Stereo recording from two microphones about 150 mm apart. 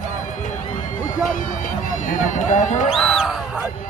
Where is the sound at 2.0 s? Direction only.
60° left (ahead or behind).